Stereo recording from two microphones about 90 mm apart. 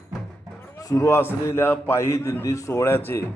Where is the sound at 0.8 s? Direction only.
40° left (ahead or behind).